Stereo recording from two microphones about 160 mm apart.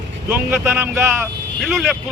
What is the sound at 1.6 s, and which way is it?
Speech, centre (ahead or behind).